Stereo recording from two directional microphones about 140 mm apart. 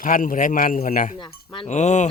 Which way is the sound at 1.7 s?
55° left (ahead or behind).